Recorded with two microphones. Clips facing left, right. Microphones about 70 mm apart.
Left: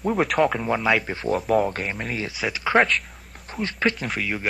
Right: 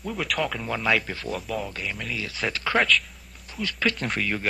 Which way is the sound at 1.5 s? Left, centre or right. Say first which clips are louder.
Left 9 dB; left.